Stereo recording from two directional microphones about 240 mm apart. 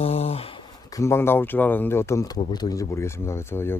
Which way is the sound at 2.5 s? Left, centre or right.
Centre.